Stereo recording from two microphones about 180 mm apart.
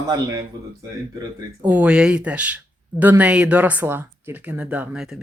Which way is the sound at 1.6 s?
10° right (ahead or behind).